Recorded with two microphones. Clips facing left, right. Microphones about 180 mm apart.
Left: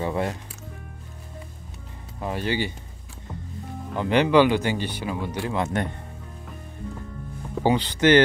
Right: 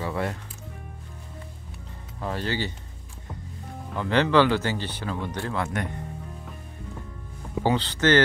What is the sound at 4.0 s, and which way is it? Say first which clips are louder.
Speech: left 2 dB; 15° left (ahead or behind).